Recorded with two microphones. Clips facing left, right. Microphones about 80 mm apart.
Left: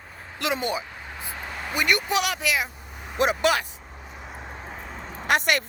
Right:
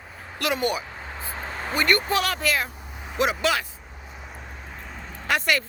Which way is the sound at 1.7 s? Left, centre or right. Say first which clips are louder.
Right 1 dB; centre.